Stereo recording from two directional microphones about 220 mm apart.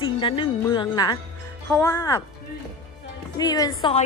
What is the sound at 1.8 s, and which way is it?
Speech, 15° left (ahead or behind).